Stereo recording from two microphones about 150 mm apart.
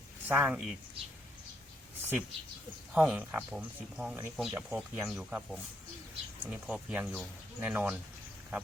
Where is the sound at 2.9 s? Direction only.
5° right (ahead or behind).